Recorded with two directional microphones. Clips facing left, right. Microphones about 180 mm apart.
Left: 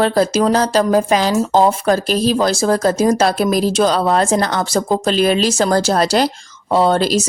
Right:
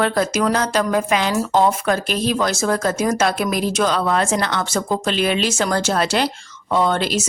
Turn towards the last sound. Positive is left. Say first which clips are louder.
# left 5 dB
turn(degrees=35)  # may be behind; listen again after turning